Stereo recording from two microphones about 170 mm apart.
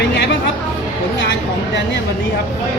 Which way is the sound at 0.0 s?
90° left.